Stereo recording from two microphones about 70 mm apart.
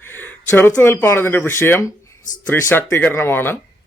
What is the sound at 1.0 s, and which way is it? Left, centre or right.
Speech, left.